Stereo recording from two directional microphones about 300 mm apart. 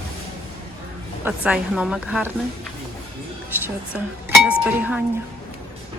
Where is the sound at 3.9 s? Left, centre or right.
Centre.